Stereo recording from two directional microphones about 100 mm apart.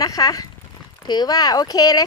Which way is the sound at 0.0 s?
35° left (ahead or behind).